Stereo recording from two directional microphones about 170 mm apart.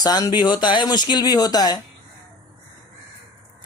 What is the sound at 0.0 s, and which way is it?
A man's voice, 25° left (ahead or behind).